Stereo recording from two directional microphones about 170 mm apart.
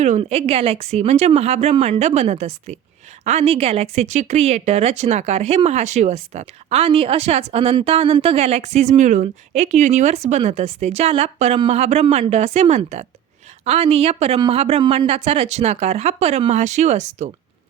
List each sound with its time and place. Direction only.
0.0 s speech: 40° right (ahead or behind)